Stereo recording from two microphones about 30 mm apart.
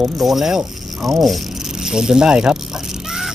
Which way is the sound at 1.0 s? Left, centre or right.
Centre.